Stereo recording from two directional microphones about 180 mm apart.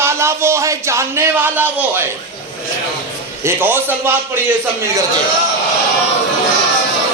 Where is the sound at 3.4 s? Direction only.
10° right (ahead or behind).